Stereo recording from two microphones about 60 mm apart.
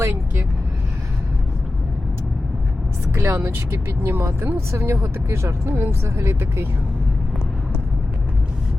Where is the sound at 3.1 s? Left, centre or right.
Right.